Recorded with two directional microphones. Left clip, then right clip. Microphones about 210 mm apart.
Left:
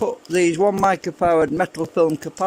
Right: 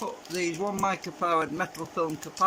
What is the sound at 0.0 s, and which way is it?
Speech, 40° left (ahead or behind).